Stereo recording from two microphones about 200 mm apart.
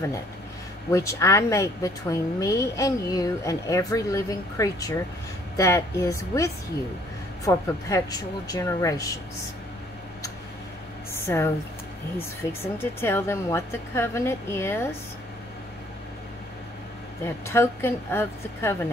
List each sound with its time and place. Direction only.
0.9 s speech: 15° left (ahead or behind)
11.1 s speech: 10° left (ahead or behind)
12.7 s speech: 10° left (ahead or behind)
17.2 s speech: 15° left (ahead or behind)